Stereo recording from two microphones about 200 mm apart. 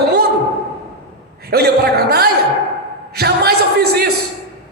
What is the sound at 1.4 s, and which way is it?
A woman's voice, 50° right (ahead or behind).